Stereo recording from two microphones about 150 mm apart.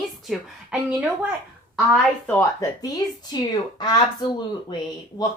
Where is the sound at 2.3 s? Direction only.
25° left (ahead or behind).